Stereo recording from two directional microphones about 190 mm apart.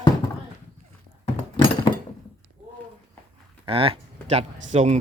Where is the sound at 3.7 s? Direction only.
30° right (ahead or behind).